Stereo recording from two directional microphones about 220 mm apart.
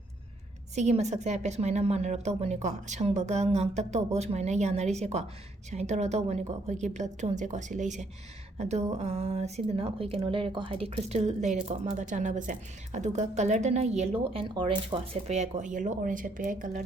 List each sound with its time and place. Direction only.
0.8 s speech: 30° right (ahead or behind)